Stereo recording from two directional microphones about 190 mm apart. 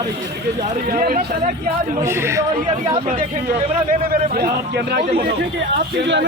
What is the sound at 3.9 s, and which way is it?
A man's voice, 50° right (ahead or behind).